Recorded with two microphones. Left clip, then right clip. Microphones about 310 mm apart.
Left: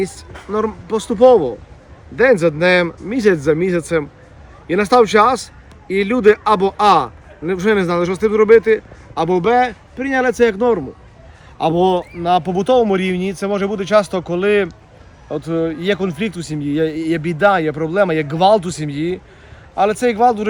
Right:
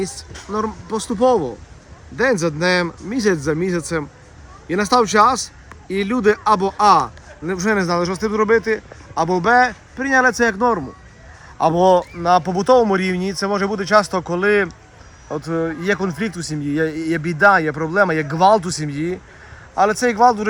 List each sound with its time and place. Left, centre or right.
0.5 s a man's voice: centre
16.3 s a man's voice: centre
16.6 s a man's voice: centre